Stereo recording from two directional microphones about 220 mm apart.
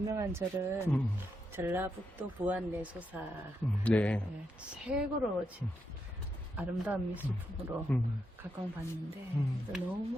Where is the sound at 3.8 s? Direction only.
5° left (ahead or behind).